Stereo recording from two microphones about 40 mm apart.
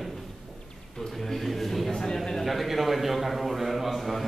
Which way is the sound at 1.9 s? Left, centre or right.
Centre.